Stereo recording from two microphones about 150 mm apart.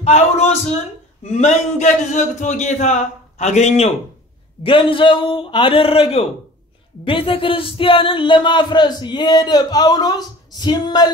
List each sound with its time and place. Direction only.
0.0 s a man's voice: 45° left (ahead or behind)
4.6 s a man's voice: 35° left (ahead or behind)